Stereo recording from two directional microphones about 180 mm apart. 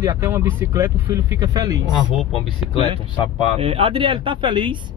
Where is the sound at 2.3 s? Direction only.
35° left (ahead or behind).